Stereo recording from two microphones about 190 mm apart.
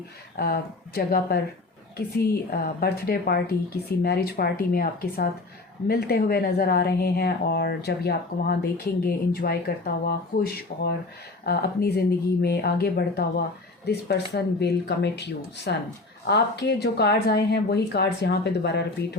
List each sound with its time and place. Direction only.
0.3 s a woman's voice: 55° left (ahead or behind)